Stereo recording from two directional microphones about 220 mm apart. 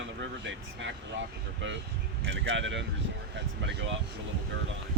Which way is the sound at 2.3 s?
60° right (ahead or behind).